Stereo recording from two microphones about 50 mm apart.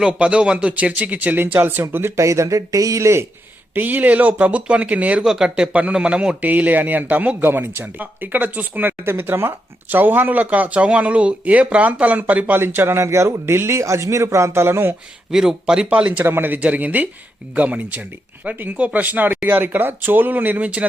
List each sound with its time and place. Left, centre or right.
0.0 s speech: right
2.1 s speech: right
3.8 s speech: right
5.2 s speech: centre
5.9 s speech: right
6.5 s speech: right
7.5 s speech: right
12.5 s speech: right
15.3 s speech: centre
16.2 s speech: right